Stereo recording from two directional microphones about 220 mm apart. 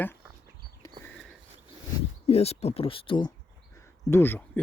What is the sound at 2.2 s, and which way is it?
Speech, 30° left (ahead or behind).